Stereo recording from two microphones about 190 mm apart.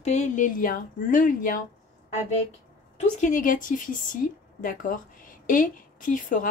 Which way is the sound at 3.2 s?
45° left (ahead or behind).